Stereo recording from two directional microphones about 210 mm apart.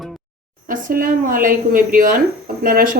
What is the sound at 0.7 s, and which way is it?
Speech, 40° right (ahead or behind).